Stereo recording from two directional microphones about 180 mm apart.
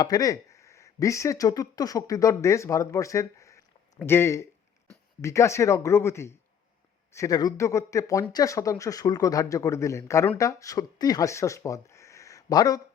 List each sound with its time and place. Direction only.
0.0 s speech: 20° left (ahead or behind)